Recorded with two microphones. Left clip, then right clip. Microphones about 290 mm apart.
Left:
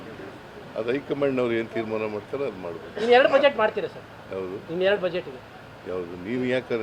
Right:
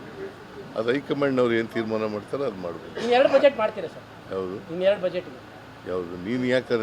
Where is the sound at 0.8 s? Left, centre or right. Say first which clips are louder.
Right 1 dB; right.